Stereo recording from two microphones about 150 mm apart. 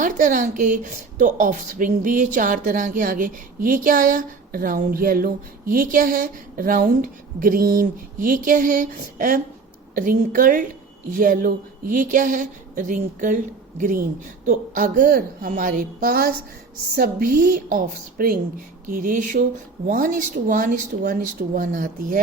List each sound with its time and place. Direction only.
0.0 s a woman's voice: 60° right (ahead or behind); by 16.3 s 85° right
16.9 s a woman's voice: 70° right (ahead or behind)
18.9 s speech: 60° right (ahead or behind)